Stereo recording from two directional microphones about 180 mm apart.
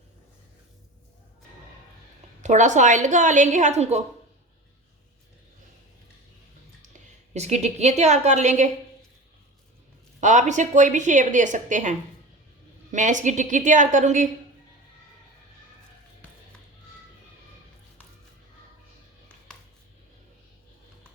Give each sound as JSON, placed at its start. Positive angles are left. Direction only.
{"t": 2.4, "sound": "a woman's voice", "side_deg": -40}
{"t": 6.9, "sound": "a woman's voice", "side_deg": -40}
{"t": 10.2, "sound": "a woman's voice", "side_deg": -40}